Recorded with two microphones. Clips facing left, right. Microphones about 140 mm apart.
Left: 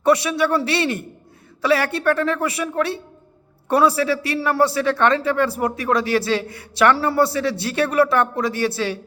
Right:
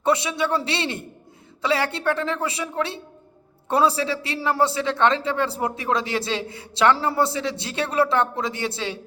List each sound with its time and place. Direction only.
0.0 s a man's voice: 20° right (ahead or behind)